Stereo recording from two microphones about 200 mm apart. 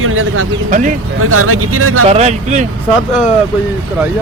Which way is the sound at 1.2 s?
90° right.